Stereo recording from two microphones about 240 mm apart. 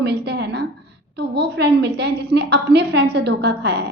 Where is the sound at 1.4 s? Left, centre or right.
Right.